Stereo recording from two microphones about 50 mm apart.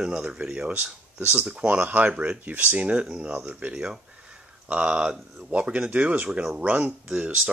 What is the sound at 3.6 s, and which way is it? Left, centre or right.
Speech, right.